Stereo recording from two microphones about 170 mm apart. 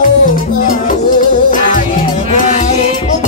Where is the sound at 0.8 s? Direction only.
50° left (ahead or behind).